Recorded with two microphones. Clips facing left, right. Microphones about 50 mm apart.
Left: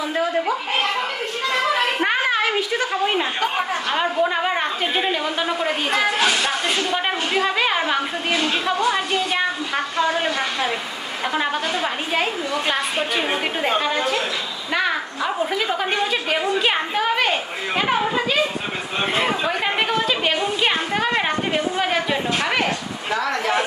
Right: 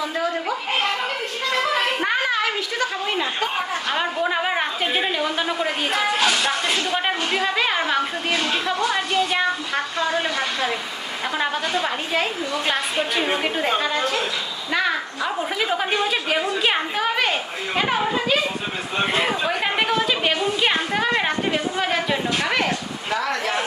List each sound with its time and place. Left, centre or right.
2.3 s a sound: left
3.9 s a woman's voice: centre
15.5 s speech: centre